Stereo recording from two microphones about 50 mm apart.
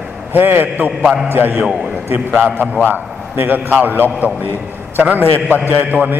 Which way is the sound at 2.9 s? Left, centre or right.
Right.